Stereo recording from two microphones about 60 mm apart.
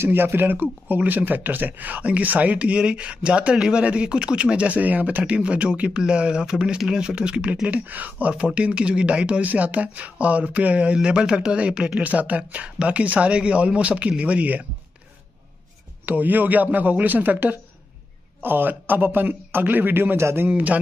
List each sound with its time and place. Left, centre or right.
0.0 s speech: right
16.1 s a man's voice: right
20.4 s speech: right